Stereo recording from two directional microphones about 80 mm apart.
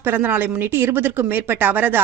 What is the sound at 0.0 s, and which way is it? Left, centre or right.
Speech, right.